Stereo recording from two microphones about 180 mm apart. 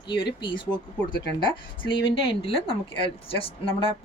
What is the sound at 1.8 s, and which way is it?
Speech, 30° left (ahead or behind).